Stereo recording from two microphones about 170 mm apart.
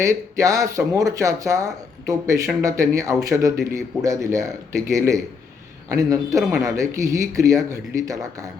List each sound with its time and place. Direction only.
0.0 s speech: 20° right (ahead or behind)